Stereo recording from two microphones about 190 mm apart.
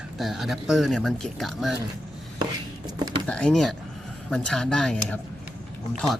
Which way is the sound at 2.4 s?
20° right (ahead or behind).